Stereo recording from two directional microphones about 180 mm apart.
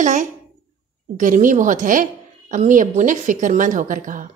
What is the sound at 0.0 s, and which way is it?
A woman's voice, 45° right (ahead or behind).